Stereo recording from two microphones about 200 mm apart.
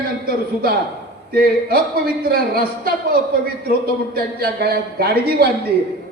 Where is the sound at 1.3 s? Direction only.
50° right (ahead or behind).